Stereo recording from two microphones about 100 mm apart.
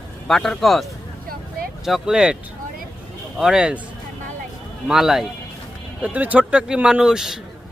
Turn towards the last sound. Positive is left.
turn(degrees=-5)  # may be behind; listen again after turning